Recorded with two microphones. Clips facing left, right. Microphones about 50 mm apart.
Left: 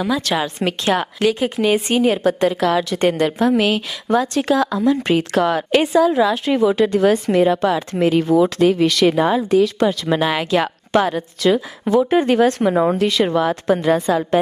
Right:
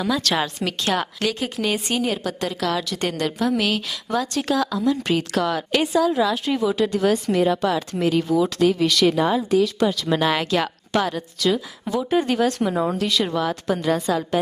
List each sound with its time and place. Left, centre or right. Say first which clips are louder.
0.0 s a woman's voice: left 2 dB; centre; by 10.1 s left
10.1 s a woman's voice: left 3 dB; centre; by 14.3 s left